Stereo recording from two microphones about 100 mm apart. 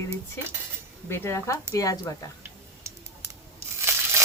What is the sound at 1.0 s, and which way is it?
Speech, 25° left (ahead or behind).